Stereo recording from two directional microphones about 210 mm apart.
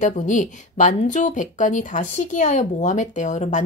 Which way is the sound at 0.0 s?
35° left (ahead or behind).